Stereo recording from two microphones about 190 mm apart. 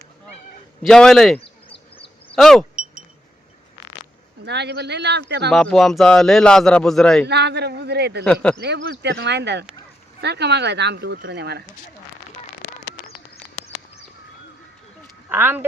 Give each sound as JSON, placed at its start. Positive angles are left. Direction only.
{"t": 0.8, "sound": "a man's voice", "side_deg": 5}
{"t": 4.4, "sound": "speech", "side_deg": -60}
{"t": 5.5, "sound": "a man's voice", "side_deg": 0}
{"t": 7.3, "sound": "speech", "side_deg": -65}
{"t": 8.2, "sound": "a man's voice", "side_deg": 5}
{"t": 8.5, "sound": "speech", "side_deg": -65}
{"t": 15.3, "sound": "speech", "side_deg": -10}